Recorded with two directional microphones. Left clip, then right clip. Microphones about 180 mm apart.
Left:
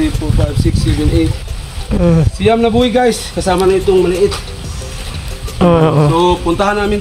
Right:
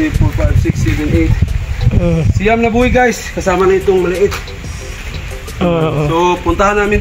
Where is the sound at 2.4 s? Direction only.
5° left (ahead or behind).